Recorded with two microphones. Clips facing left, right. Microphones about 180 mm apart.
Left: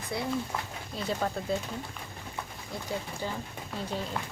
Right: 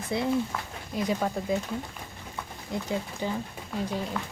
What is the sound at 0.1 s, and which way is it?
Speech, 20° right (ahead or behind).